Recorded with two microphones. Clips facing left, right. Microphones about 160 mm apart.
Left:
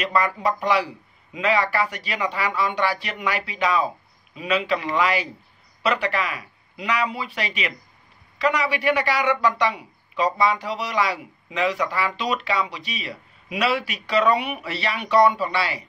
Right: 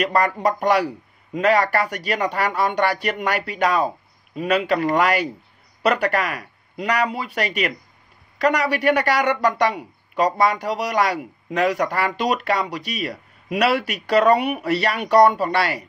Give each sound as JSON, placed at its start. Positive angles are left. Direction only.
{"t": 0.0, "sound": "a man's voice", "side_deg": -45}
{"t": 9.1, "sound": "a man's voice", "side_deg": -60}